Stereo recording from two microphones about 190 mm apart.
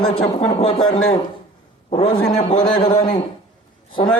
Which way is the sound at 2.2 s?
40° left (ahead or behind).